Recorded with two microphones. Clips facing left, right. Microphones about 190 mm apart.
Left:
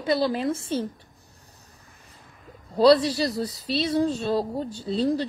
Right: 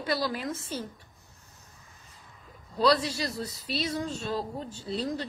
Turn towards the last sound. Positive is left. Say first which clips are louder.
# left 8 dB
turn(degrees=30)  # may be behind; listen again after turning